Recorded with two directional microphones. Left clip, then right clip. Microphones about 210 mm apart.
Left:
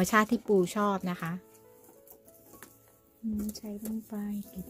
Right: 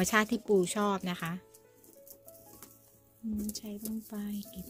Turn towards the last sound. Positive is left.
turn(degrees=0)  # may be behind; listen again after turning